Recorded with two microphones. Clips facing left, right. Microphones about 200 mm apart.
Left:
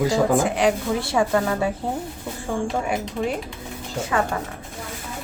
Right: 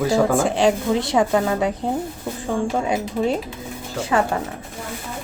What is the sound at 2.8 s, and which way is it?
Speech, 20° right (ahead or behind).